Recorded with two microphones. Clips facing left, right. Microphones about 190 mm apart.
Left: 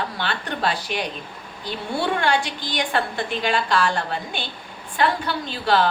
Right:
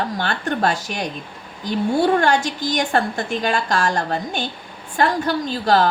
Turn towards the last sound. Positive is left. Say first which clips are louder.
# right 3 dB
turn(degrees=-40)  # may be behind; listen again after turning